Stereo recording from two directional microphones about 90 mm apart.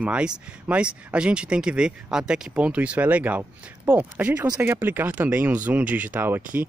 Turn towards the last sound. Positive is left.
turn(degrees=-25)  # may be behind; listen again after turning